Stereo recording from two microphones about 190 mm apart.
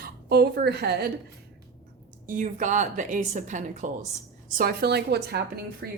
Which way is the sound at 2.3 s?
40° right (ahead or behind).